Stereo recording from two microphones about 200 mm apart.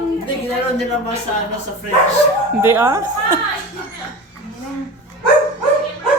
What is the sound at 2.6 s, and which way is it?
Speech, 15° right (ahead or behind).